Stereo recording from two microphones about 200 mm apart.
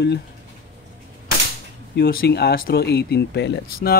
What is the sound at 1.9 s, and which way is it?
Speech, 50° left (ahead or behind).